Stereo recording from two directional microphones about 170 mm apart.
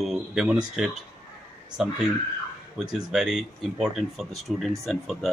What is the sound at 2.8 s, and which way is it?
A man's voice, centre (ahead or behind).